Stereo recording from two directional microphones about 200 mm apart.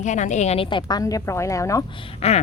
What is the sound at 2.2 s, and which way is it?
Speech, 30° left (ahead or behind).